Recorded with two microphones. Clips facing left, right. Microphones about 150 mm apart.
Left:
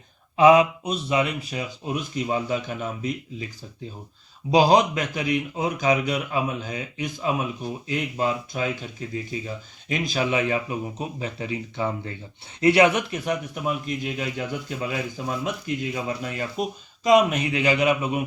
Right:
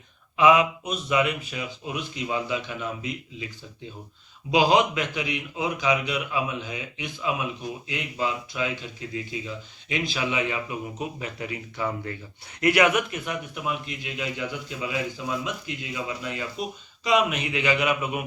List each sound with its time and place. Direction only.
0.3 s a man's voice: 35° left (ahead or behind)
4.5 s a man's voice: 35° left (ahead or behind)
9.9 s speech: 45° left (ahead or behind)
11.2 s a man's voice: 30° left (ahead or behind)